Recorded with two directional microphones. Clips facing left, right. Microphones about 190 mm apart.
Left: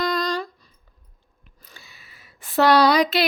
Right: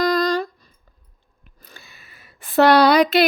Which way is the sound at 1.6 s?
55° right (ahead or behind).